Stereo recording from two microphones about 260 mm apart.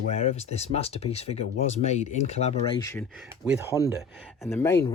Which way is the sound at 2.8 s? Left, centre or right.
Centre.